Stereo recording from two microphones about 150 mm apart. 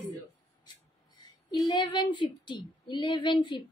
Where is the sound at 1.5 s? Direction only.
30° left (ahead or behind).